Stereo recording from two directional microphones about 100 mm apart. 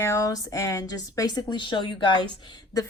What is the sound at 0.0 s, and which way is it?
Speech, 35° left (ahead or behind).